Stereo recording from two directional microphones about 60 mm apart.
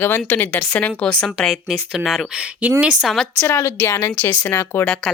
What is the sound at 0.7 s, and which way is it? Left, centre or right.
Speech, centre.